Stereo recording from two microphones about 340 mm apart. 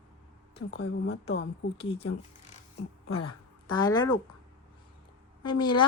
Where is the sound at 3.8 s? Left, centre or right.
Centre.